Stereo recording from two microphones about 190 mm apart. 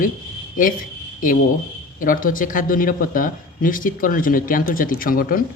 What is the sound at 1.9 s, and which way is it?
Speech, 45° left (ahead or behind).